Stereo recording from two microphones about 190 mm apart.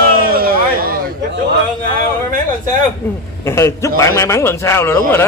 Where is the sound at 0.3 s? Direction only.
50° right (ahead or behind).